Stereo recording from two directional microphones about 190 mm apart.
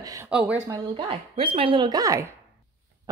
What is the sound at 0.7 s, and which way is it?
Speech, 25° right (ahead or behind).